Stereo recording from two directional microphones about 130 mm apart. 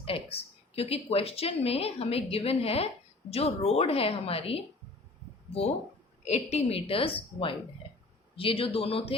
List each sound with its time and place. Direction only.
0.0 s speech: 50° left (ahead or behind)
6.2 s speech: 55° left (ahead or behind)